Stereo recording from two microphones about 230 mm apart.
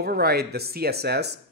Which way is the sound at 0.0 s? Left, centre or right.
Right.